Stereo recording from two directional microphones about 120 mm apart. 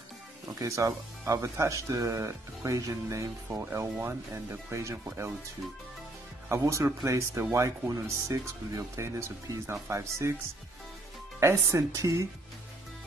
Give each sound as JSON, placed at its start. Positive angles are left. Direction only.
{"t": 0.5, "sound": "speech", "side_deg": -25}
{"t": 6.5, "sound": "speech", "side_deg": -25}
{"t": 11.3, "sound": "speech", "side_deg": -25}